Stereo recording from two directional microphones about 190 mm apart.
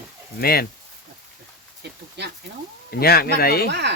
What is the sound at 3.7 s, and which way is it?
Speech, 65° right (ahead or behind).